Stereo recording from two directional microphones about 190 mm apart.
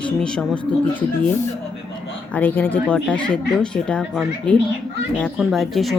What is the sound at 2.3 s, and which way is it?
Speech, 10° left (ahead or behind).